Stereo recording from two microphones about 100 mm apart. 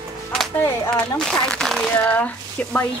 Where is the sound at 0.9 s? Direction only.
10° left (ahead or behind).